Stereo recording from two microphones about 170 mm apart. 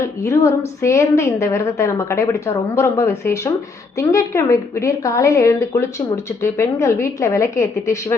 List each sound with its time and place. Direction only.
0.0 s a woman's voice: 20° left (ahead or behind)